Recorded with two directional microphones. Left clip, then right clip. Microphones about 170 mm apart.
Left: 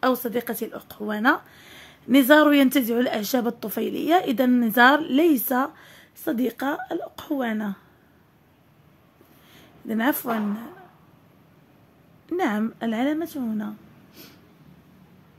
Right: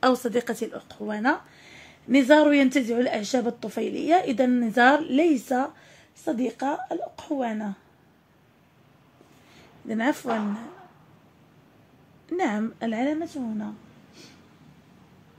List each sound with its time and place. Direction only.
0.0 s a woman's voice: centre (ahead or behind)
0.7 s speech: 20° left (ahead or behind)
9.8 s speech: 20° left (ahead or behind)
12.3 s speech: 20° left (ahead or behind); by 13.7 s 35° left (ahead or behind)